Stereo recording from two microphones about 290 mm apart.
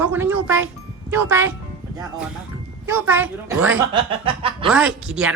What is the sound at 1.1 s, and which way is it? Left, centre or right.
Speech, centre.